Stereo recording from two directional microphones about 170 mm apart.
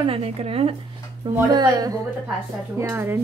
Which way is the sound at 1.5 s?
25° right (ahead or behind).